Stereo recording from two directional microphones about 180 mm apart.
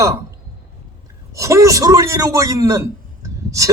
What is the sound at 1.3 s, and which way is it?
A man's voice, 15° right (ahead or behind).